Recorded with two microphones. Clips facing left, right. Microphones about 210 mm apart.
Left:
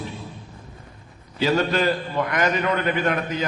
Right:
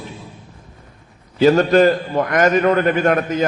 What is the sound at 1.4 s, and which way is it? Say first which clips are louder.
A man's voice: right 9 dB; 45° right (ahead or behind).